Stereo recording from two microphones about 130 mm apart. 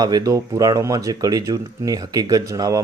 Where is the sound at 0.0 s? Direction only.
30° right (ahead or behind).